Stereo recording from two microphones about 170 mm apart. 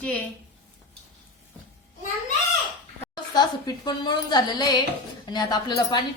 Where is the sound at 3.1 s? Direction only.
25° left (ahead or behind).